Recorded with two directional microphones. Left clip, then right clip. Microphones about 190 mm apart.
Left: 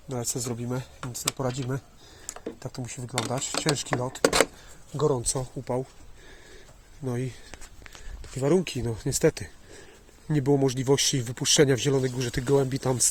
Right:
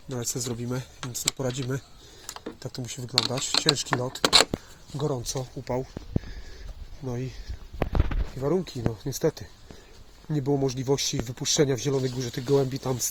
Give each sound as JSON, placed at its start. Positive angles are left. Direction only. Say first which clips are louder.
{"t": 0.1, "sound": "speech", "louder": "even", "side_deg": 0}
{"t": 4.9, "sound": "speech", "louder": "left 4 dB", "side_deg": 20}
{"t": 7.0, "sound": "speech", "louder": "left 2 dB", "side_deg": 20}
{"t": 8.4, "sound": "speech", "louder": "left 3 dB", "side_deg": 30}